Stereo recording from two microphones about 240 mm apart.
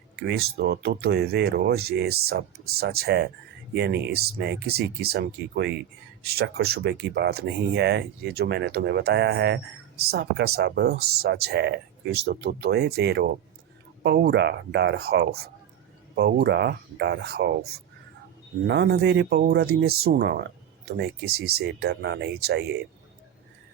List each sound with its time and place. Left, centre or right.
0.2 s speech: right